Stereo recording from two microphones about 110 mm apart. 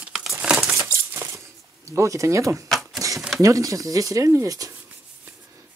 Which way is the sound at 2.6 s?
Centre (ahead or behind).